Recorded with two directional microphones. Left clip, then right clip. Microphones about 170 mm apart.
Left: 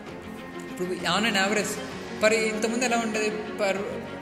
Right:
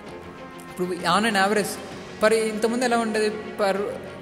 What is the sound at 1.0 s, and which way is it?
A man's voice, 30° right (ahead or behind).